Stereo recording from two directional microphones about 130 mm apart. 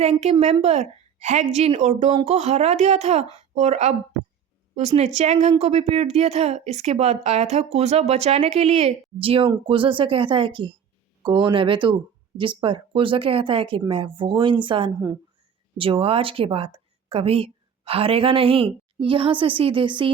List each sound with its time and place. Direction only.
0.0 s a woman's voice: 55° right (ahead or behind); by 20.1 s 40° right (ahead or behind)